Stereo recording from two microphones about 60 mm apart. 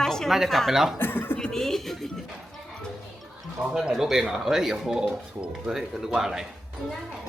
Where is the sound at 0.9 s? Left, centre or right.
Left.